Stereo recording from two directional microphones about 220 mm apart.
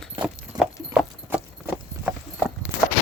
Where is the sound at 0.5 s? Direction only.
20° right (ahead or behind).